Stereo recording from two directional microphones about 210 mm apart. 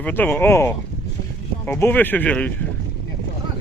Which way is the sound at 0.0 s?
10° left (ahead or behind).